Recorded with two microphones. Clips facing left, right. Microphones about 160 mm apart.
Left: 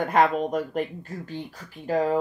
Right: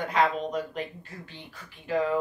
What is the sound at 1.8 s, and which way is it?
Speech, 40° left (ahead or behind).